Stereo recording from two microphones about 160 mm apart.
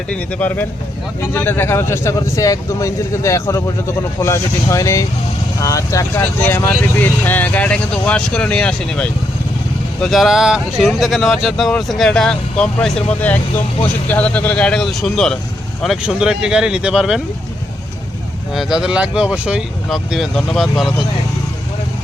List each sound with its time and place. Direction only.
0.1 s a man's voice: 10° left (ahead or behind)
18.5 s speech: 5° right (ahead or behind)